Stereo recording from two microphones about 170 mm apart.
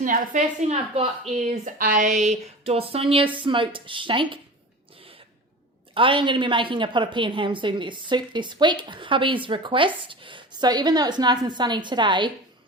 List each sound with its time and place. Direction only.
0.0 s a woman's voice: 50° right (ahead or behind); by 4.4 s 30° right (ahead or behind)
5.9 s a woman's voice: 30° right (ahead or behind)